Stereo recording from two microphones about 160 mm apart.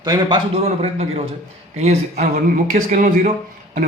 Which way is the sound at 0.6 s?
40° right (ahead or behind).